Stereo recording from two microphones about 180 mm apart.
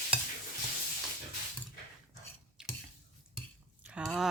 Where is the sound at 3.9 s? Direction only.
Centre (ahead or behind).